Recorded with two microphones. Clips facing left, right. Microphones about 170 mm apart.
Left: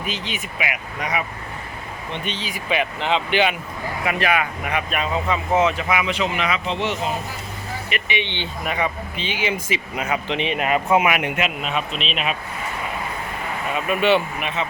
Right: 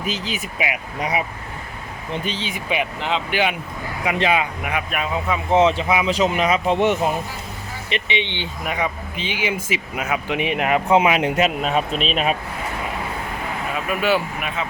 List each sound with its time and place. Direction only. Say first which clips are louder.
0.0 s speech: right 2 dB; 35° right (ahead or behind)
2.6 s speech: left 2 dB; 10° right (ahead or behind)
4.0 s speech: right 2 dB; 20° right (ahead or behind)
4.6 s speech: even; 5° right (ahead or behind)
5.5 s speech: right 4 dB; 30° right (ahead or behind)
6.1 s speech: right 4 dB; 40° right (ahead or behind)
7.9 s speech: right 3 dB; 25° right (ahead or behind); by 12.4 s 40° right (ahead or behind)
14.0 s speech: left 2 dB; centre (ahead or behind)